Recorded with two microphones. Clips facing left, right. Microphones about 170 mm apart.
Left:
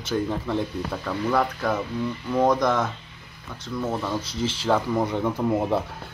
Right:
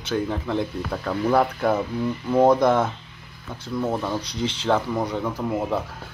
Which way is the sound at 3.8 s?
10° right (ahead or behind).